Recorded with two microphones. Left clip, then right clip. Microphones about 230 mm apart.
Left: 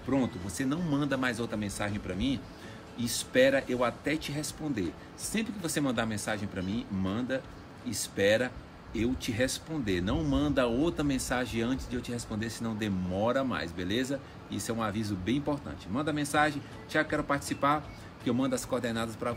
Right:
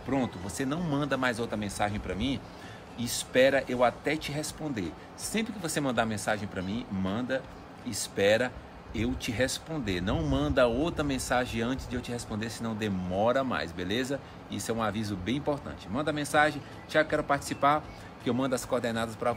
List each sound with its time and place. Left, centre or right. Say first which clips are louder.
0.1 s speech: even; centre